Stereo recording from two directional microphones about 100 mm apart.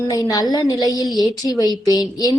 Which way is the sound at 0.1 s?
40° left (ahead or behind).